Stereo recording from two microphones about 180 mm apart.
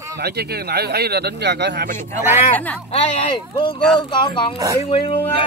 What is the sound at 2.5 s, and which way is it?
Speech, 10° left (ahead or behind).